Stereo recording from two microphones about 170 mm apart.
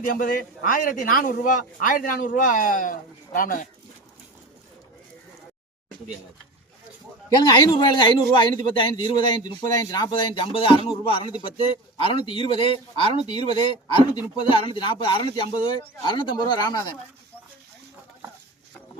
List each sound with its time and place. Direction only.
0.0 s speech: 55° left (ahead or behind)
7.3 s a man's voice: 25° left (ahead or behind)